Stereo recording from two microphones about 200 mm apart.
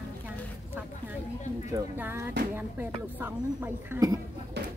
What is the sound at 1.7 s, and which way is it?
Speech, 10° right (ahead or behind).